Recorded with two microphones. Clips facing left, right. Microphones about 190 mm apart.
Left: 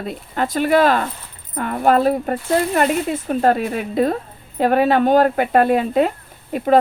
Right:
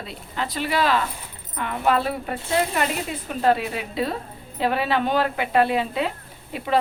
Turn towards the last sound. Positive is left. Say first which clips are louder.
# left 8 dB
turn(degrees=45)  # may be behind; listen again after turning